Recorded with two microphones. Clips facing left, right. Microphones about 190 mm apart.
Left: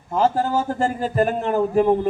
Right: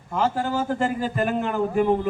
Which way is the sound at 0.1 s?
40° left (ahead or behind).